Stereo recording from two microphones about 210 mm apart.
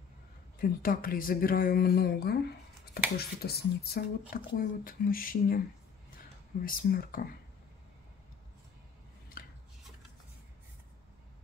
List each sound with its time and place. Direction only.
0.6 s speech: 45° left (ahead or behind)
6.6 s speech: 45° left (ahead or behind)
9.4 s chopping: 45° left (ahead or behind)